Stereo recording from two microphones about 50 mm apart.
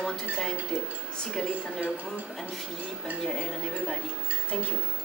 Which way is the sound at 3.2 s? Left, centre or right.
Centre.